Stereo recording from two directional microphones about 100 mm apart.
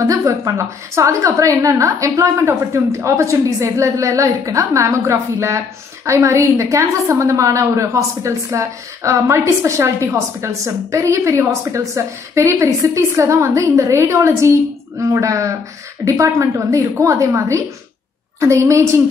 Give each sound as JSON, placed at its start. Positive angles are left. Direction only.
{"t": 0.0, "sound": "a woman's voice", "side_deg": -35}